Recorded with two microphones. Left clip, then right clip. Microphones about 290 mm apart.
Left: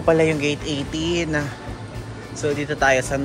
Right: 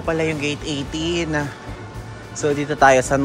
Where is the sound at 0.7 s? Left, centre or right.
Centre.